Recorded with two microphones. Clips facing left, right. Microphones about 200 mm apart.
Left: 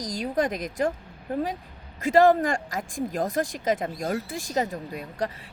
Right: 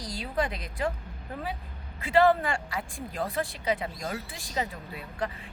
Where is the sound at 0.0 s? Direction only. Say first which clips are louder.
Left 5 dB; 45° left (ahead or behind).